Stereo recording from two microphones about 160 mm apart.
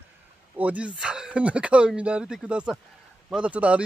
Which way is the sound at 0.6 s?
10° right (ahead or behind).